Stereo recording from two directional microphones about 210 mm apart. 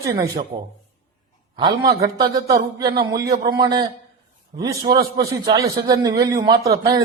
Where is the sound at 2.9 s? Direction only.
45° right (ahead or behind).